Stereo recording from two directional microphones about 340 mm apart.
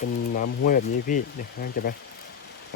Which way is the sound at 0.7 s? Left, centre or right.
Left.